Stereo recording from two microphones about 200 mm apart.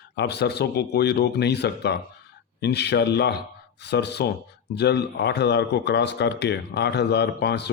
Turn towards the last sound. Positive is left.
turn(degrees=55)  # may be behind; listen again after turning